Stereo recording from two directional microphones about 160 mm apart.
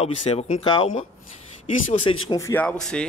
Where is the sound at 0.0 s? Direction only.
40° left (ahead or behind).